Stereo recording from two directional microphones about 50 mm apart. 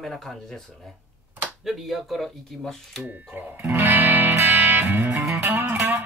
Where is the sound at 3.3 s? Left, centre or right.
Right.